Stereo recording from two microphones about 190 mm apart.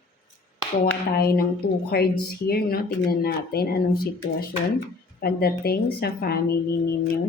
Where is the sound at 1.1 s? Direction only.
55° left (ahead or behind).